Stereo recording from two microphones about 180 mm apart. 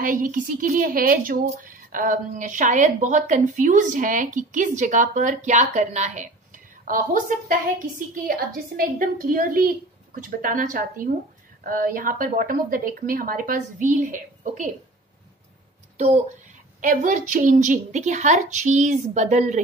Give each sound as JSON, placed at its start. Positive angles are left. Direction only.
{"t": 0.0, "sound": "a woman's voice", "side_deg": -50}
{"t": 16.8, "sound": "a woman's voice", "side_deg": -45}